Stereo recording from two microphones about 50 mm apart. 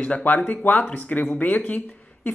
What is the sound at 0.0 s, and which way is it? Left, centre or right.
Speech, left.